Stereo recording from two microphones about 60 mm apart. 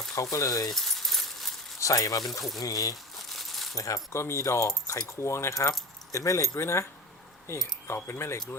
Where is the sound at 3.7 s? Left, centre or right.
Left.